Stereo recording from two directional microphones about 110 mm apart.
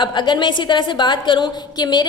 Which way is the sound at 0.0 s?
45° left (ahead or behind).